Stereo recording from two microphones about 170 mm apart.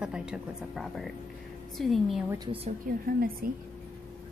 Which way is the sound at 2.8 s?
60° right (ahead or behind).